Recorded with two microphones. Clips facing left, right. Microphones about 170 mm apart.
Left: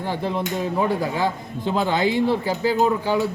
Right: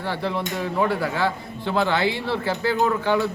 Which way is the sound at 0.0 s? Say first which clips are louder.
Left 1 dB; 15° left (ahead or behind).